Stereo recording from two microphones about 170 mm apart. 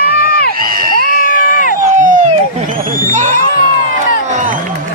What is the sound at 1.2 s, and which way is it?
Crowd, 55° left (ahead or behind).